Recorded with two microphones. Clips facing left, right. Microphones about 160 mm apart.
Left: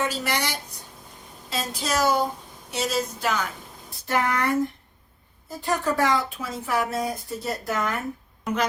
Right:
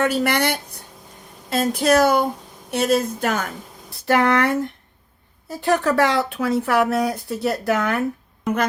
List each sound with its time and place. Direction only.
0.0 s speech: 60° right (ahead or behind)
3.8 s speech: 70° right (ahead or behind)
5.5 s speech: 70° right (ahead or behind)